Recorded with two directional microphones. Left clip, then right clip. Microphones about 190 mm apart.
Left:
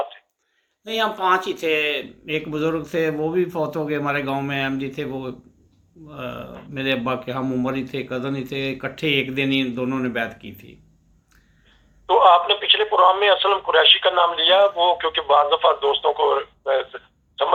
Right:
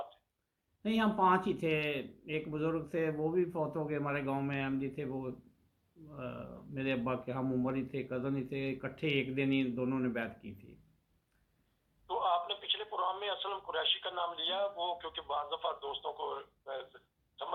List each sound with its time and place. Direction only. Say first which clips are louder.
0.9 s speech: left 10 dB; 5° left (ahead or behind)
12.0 s speech: left 19 dB; 45° left (ahead or behind)